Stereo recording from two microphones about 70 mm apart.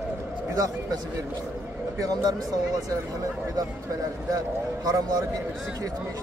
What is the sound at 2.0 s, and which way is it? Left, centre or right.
Speech, right.